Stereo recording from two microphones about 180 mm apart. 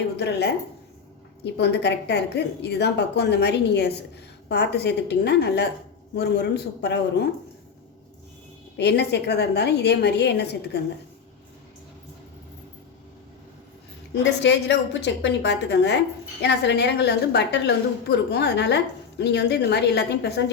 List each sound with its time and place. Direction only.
0.2 s a woman's voice: 70° left (ahead or behind)
8.7 s a woman's voice: 70° left (ahead or behind)
14.1 s a woman's voice: 75° left (ahead or behind)